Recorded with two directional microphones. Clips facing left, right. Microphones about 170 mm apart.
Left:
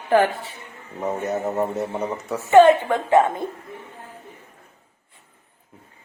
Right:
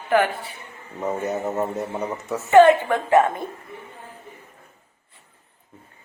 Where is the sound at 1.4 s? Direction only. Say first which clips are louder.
Left 1 dB; 15° left (ahead or behind).